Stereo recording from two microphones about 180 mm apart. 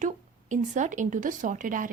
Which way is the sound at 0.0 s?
45° right (ahead or behind).